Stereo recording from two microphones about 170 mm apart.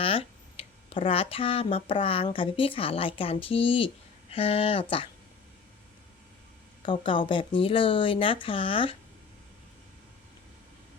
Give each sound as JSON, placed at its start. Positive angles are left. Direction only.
{"t": 0.0, "sound": "speech", "side_deg": 35}
{"t": 6.8, "sound": "speech", "side_deg": 30}